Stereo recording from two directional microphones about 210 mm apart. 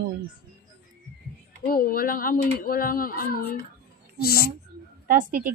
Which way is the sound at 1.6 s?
45° left (ahead or behind).